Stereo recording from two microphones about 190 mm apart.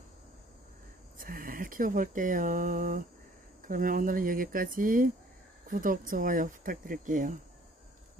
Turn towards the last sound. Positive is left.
turn(degrees=-45)  # may be behind; listen again after turning